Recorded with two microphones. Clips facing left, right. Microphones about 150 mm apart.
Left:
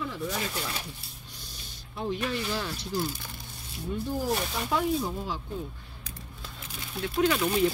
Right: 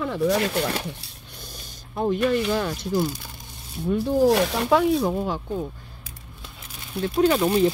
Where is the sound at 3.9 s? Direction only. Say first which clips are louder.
Right 11 dB; 80° right.